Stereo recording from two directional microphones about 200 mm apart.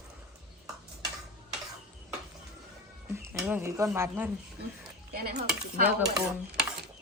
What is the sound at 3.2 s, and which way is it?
Speech, 10° right (ahead or behind).